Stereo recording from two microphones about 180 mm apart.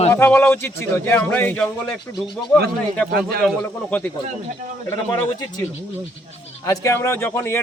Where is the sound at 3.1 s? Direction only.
60° right (ahead or behind).